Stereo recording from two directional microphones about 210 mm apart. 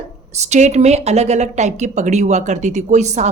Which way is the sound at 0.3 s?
30° right (ahead or behind).